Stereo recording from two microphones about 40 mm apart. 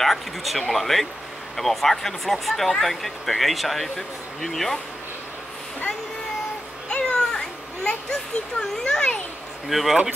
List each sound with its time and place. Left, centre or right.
0.0 s speech: centre
6.9 s children playing: centre
8.1 s speech: left
9.7 s speech: centre